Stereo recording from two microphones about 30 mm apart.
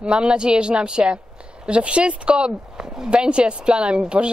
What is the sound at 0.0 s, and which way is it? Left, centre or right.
A woman's voice, right.